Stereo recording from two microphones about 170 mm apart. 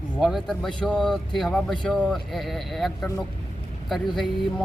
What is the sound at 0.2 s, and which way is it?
Speech, centre (ahead or behind).